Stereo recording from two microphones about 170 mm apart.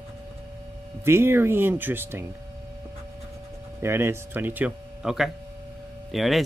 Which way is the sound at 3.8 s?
15° right (ahead or behind).